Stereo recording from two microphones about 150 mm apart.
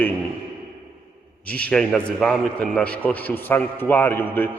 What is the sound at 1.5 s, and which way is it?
A man's voice, 10° left (ahead or behind).